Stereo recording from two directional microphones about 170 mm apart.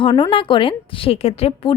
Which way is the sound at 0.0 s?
30° left (ahead or behind).